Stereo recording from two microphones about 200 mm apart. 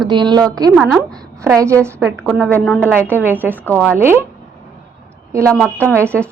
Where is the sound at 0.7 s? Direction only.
Centre (ahead or behind).